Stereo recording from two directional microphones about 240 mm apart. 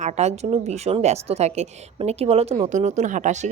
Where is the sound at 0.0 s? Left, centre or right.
Right.